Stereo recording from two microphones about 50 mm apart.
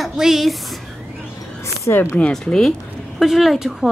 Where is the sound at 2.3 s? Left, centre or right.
Centre.